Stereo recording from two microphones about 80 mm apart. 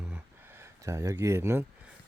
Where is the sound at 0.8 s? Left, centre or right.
Right.